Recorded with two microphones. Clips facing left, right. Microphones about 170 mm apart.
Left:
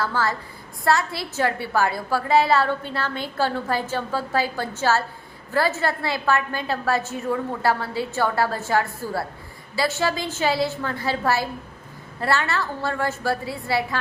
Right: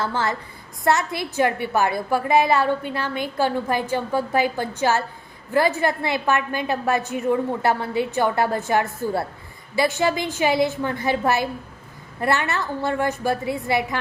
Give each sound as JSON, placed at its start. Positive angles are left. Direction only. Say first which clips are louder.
{"t": 0.0, "sound": "a woman's voice", "louder": "even", "side_deg": -20}